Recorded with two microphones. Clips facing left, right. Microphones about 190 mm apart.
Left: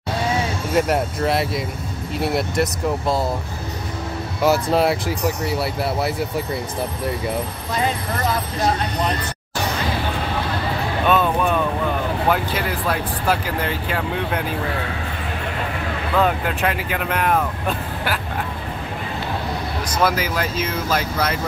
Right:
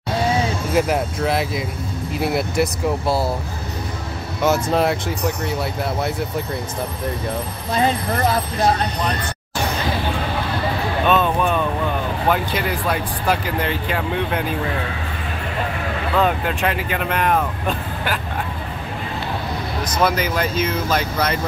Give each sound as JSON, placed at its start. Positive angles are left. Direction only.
{"t": 0.7, "sound": "speech", "side_deg": 0}
{"t": 4.4, "sound": "speech", "side_deg": 0}
{"t": 7.7, "sound": "speech", "side_deg": -30}
{"t": 11.1, "sound": "music", "side_deg": 10}
{"t": 13.3, "sound": "speech", "side_deg": 5}
{"t": 16.2, "sound": "speech", "side_deg": 5}
{"t": 19.9, "sound": "speech", "side_deg": 5}